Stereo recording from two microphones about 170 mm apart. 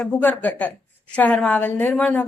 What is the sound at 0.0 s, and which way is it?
A woman's voice, 10° left (ahead or behind).